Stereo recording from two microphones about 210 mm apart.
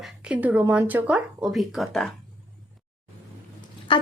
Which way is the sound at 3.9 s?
25° left (ahead or behind).